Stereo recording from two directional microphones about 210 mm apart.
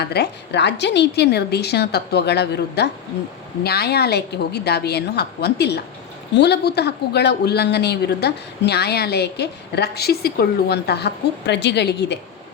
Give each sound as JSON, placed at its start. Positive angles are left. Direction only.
{"t": 0.0, "sound": "speech", "side_deg": 50}